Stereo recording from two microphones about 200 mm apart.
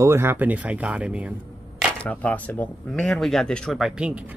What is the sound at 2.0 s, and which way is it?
Speech, 5° left (ahead or behind).